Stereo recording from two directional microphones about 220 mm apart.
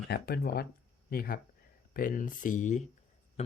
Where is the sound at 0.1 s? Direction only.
45° left (ahead or behind).